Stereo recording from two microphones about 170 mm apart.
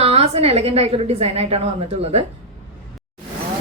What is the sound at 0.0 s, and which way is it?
A woman's voice, 35° right (ahead or behind).